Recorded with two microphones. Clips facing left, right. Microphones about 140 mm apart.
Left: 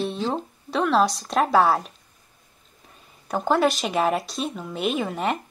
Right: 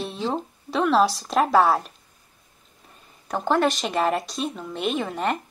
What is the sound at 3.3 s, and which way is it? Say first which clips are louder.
Speech: left 1 dB; centre (ahead or behind).